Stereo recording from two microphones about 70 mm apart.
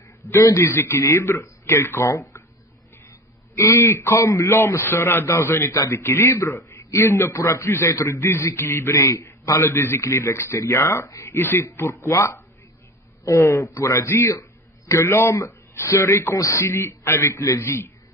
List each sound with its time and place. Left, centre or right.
0.3 s a man's voice: left
3.6 s a man's voice: left
11.3 s a man's voice: left
17.6 s a man's voice: left